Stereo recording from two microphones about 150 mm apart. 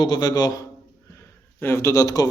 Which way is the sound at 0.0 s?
30° left (ahead or behind).